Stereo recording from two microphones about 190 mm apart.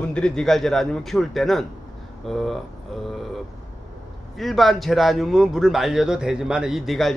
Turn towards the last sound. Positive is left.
turn(degrees=0)  # may be behind; listen again after turning